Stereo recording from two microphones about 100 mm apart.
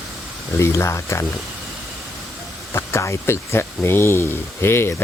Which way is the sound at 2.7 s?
25° left (ahead or behind).